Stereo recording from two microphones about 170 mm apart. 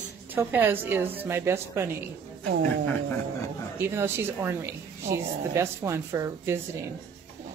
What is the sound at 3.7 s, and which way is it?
A woman's voice, 15° right (ahead or behind).